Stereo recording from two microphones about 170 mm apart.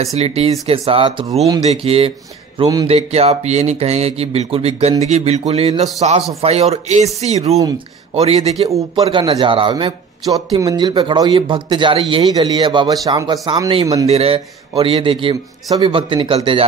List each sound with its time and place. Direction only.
0.0 s a man's voice: 40° right (ahead or behind)
2.9 s a man's voice: 40° right (ahead or behind)
14.0 s a man's voice: 35° right (ahead or behind)